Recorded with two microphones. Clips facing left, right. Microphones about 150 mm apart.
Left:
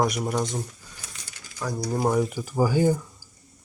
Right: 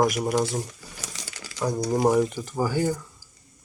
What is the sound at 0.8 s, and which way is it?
Mechanisms, 90° right.